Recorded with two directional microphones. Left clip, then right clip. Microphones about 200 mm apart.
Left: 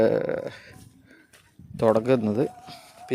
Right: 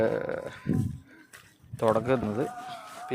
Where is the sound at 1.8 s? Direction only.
50° left (ahead or behind).